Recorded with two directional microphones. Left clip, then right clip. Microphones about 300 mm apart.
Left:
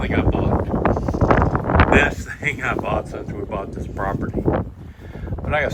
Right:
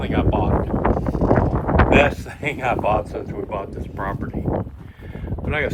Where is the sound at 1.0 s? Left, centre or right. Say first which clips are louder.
Left 1 dB; centre.